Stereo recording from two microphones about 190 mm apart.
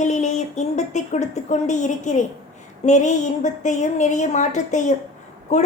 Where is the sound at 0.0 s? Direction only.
40° left (ahead or behind).